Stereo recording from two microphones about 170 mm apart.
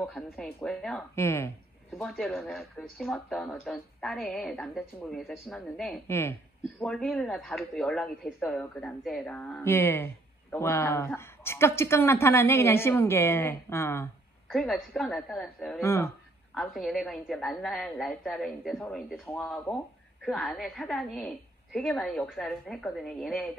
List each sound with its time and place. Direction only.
0.0 s speech: centre (ahead or behind)
1.1 s a woman's voice: 15° left (ahead or behind)
2.0 s speech: centre (ahead or behind)
6.0 s a woman's voice: 15° left (ahead or behind)
6.8 s a woman's voice: centre (ahead or behind)
14.5 s speech: centre (ahead or behind)
15.8 s a woman's voice: 15° left (ahead or behind)
16.5 s a woman's voice: centre (ahead or behind)